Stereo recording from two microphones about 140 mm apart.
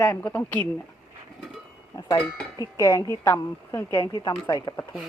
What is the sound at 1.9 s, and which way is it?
A woman's voice, 30° left (ahead or behind).